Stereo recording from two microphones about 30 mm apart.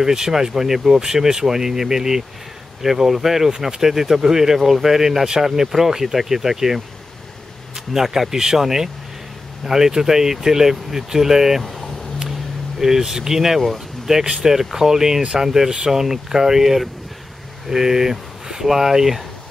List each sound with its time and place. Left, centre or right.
0.0 s speech: centre
12.3 s vehicle: centre
14.1 s speech: centre
14.4 s speech: centre